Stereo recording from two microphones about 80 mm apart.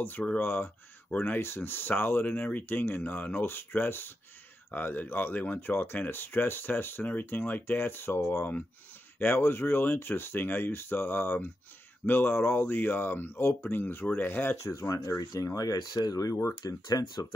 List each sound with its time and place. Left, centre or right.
0.0 s speech: centre
14.6 s speech: left